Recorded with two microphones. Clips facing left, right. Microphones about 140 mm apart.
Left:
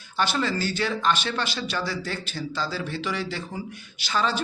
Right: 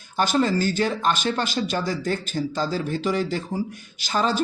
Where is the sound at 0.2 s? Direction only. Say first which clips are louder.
Right 5 dB; 45° right (ahead or behind).